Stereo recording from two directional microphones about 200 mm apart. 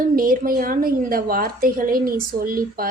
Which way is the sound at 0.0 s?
45° right (ahead or behind).